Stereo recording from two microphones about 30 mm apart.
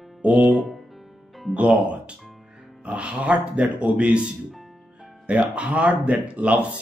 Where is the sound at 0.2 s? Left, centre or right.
Right.